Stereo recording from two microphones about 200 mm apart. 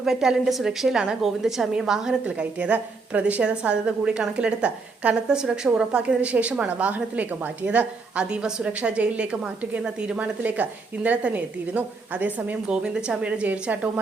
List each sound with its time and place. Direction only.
0.0 s a woman's voice: 5° right (ahead or behind)